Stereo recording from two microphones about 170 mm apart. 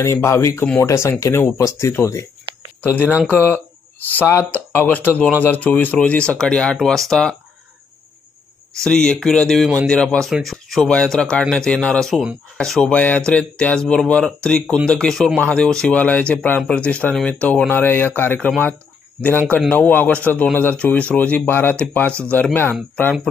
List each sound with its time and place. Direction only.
0.0 s speech: 15° left (ahead or behind)
3.3 s speech: 15° left (ahead or behind)
8.8 s speech: 5° left (ahead or behind)
19.5 s speech: 10° left (ahead or behind)